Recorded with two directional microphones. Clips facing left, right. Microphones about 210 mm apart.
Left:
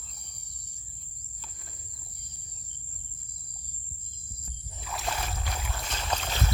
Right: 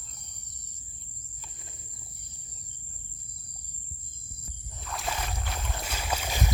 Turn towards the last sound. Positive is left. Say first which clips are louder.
# even
turn(degrees=-10)  # may be behind; listen again after turning